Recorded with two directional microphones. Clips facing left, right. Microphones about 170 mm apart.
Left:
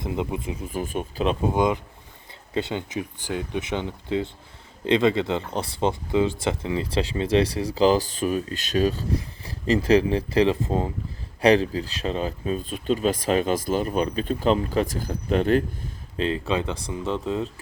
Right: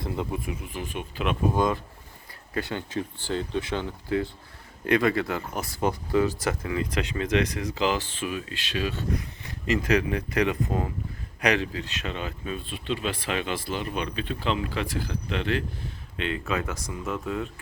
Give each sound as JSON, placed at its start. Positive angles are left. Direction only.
{"t": 0.0, "sound": "speech", "side_deg": 20}
{"t": 0.7, "sound": "speech", "side_deg": 45}
{"t": 1.5, "sound": "speech", "side_deg": 20}
{"t": 16.1, "sound": "speech", "side_deg": 35}